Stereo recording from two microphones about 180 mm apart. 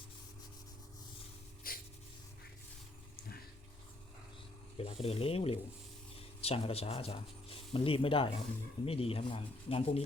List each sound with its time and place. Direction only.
1.7 s wheeze: 55° left (ahead or behind)
4.8 s speech: 35° left (ahead or behind)